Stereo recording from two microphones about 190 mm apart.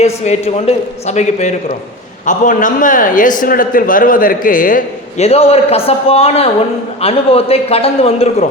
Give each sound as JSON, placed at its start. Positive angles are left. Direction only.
{"t": 0.0, "sound": "a man's voice", "side_deg": 35}